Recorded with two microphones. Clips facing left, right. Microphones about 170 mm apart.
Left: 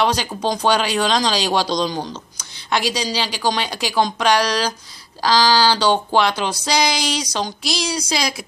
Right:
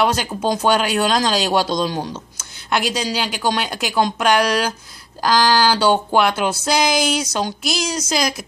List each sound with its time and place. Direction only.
0.0 s speech: 5° right (ahead or behind)
5.7 s speech: 5° right (ahead or behind)